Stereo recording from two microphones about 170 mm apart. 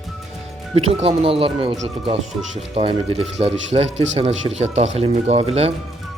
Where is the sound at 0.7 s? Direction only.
35° right (ahead or behind).